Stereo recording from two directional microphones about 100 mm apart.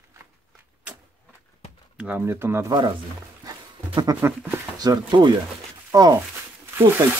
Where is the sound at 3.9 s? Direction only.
40° right (ahead or behind).